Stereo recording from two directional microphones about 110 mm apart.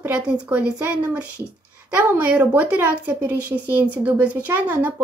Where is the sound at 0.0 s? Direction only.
15° right (ahead or behind).